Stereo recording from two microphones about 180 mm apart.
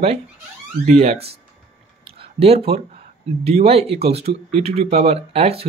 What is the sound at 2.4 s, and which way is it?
Speech, 35° right (ahead or behind).